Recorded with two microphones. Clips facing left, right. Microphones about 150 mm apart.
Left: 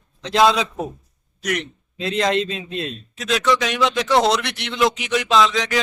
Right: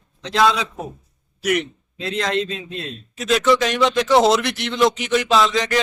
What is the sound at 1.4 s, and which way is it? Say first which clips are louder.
Speech: right 4 dB; 5° right (ahead or behind).